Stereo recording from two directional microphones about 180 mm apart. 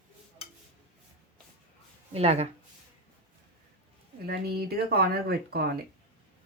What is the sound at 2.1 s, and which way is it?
Speech, 35° right (ahead or behind).